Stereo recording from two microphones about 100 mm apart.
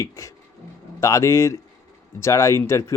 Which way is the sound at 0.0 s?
30° left (ahead or behind).